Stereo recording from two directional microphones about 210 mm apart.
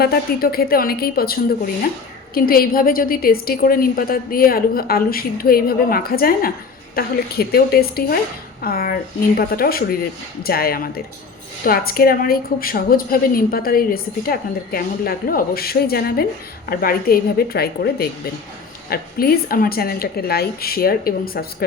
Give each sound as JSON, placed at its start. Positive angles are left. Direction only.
{"t": 0.0, "sound": "a woman's voice", "side_deg": 45}